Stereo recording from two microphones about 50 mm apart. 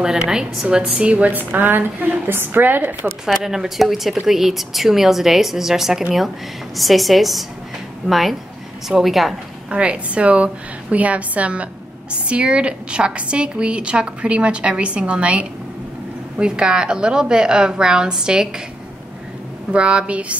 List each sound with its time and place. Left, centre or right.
0.0 s a woman's voice: centre
1.3 s a woman's voice: right
3.4 s a woman's voice: centre
9.7 s a woman's voice: right
19.7 s a woman's voice: right